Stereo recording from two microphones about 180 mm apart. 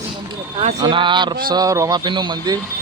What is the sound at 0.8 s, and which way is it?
Speech, 25° right (ahead or behind).